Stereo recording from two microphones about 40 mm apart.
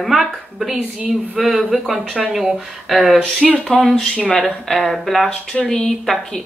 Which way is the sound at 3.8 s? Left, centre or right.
Centre.